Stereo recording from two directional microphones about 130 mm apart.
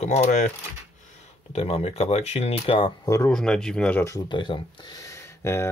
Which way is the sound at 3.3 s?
5° left (ahead or behind).